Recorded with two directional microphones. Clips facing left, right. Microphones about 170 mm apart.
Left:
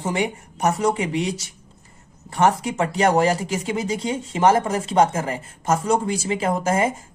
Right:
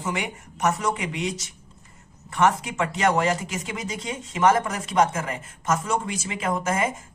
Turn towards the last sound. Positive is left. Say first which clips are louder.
# left 4 dB
turn(degrees=30)  # may be behind; listen again after turning